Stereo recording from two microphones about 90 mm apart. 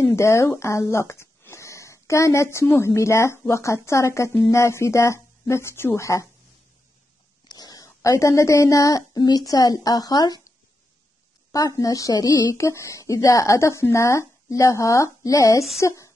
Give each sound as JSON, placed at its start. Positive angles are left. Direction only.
{"t": 0.1, "sound": "speech", "side_deg": 30}
{"t": 7.4, "sound": "a sound", "side_deg": 50}
{"t": 7.8, "sound": "speech", "side_deg": 35}
{"t": 11.5, "sound": "speech", "side_deg": 40}